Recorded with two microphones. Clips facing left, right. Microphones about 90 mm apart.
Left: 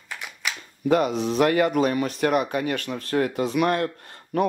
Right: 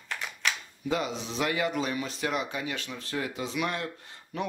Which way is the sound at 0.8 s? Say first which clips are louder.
Left 10 dB; 55° left (ahead or behind).